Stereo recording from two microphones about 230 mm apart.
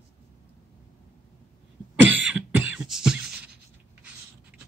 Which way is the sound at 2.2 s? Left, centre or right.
Centre.